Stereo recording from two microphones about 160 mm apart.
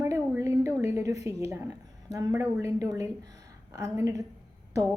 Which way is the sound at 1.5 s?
15° right (ahead or behind).